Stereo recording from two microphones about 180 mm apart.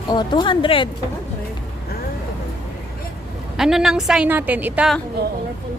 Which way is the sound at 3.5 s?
Centre (ahead or behind).